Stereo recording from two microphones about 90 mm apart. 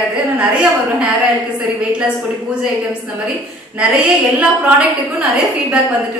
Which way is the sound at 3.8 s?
15° right (ahead or behind).